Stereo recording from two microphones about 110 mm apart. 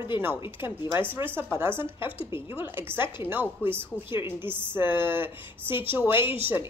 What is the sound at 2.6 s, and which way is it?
Speech, 20° right (ahead or behind).